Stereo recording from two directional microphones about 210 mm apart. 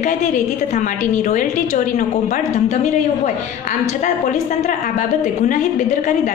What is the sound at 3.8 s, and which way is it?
A woman's voice, 35° left (ahead or behind).